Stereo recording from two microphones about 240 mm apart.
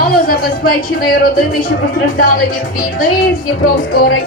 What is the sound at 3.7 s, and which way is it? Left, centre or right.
Speech, left.